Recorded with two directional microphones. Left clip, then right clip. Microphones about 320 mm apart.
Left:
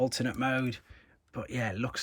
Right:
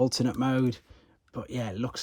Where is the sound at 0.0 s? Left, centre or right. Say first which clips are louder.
Right 3 dB; centre.